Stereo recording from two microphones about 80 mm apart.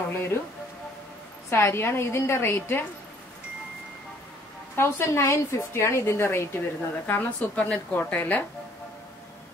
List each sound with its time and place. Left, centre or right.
0.1 s speech: left
1.5 s a woman's voice: left
4.7 s a woman's voice: left
7.1 s a woman's voice: centre